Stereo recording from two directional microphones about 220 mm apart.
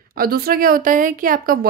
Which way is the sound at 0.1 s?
40° right (ahead or behind).